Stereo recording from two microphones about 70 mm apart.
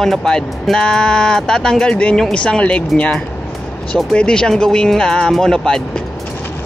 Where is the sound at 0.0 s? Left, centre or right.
Centre.